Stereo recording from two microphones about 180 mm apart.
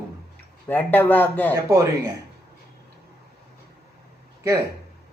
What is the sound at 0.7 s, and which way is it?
Speech, 10° left (ahead or behind).